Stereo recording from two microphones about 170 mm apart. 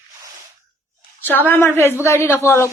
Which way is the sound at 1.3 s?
10° left (ahead or behind).